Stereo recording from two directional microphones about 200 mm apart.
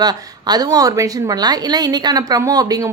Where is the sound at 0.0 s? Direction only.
20° right (ahead or behind).